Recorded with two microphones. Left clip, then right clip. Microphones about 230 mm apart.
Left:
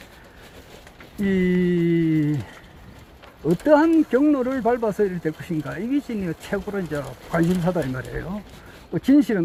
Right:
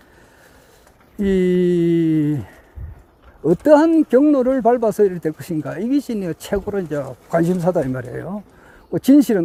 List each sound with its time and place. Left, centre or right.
1.2 s speech: right
3.4 s speech: right